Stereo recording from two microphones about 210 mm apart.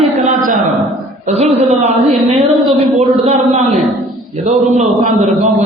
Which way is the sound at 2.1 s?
Centre (ahead or behind).